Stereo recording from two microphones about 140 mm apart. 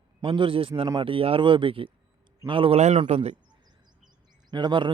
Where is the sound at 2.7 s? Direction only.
50° right (ahead or behind).